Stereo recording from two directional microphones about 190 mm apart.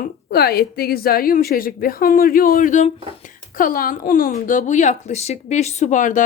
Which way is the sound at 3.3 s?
45° left (ahead or behind).